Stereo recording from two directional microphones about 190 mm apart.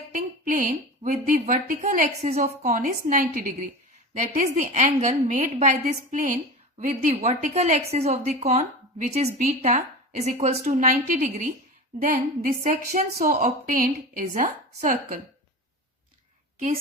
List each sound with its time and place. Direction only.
0.1 s a woman's voice: 45° right (ahead or behind)